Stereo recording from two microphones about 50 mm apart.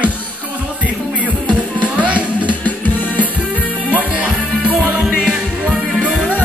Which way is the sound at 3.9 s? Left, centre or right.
Right.